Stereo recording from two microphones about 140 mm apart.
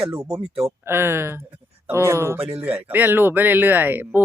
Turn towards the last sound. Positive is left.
turn(degrees=-15)  # may be behind; listen again after turning